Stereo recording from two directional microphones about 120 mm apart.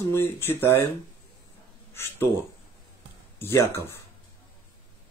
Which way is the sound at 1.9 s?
20° left (ahead or behind).